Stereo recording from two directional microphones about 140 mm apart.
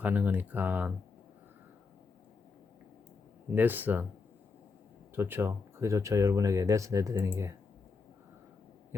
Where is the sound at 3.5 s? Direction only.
15° right (ahead or behind).